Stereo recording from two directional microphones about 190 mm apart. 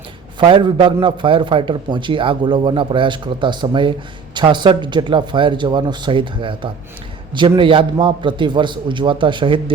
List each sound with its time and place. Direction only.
0.3 s a man's voice: 25° right (ahead or behind)